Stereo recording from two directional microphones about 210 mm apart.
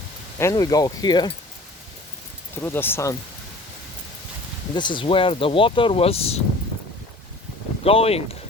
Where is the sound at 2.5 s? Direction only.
10° left (ahead or behind).